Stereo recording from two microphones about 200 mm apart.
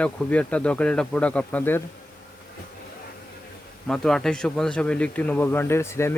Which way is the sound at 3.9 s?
5° left (ahead or behind).